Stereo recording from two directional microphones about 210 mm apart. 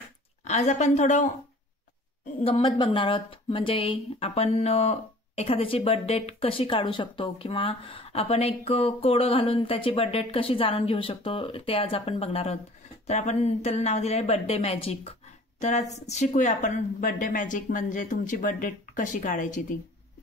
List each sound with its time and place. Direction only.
0.4 s a woman's voice: 35° left (ahead or behind)
2.4 s a woman's voice: 25° left (ahead or behind)